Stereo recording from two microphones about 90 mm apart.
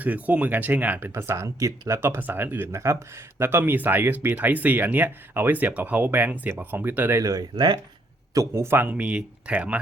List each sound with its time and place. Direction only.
0.0 s speech: 15° right (ahead or behind)
1.4 s speech: 40° right (ahead or behind); by 7.2 s 20° right (ahead or behind)
7.2 s speech: 40° right (ahead or behind)
8.5 s speech: 25° right (ahead or behind)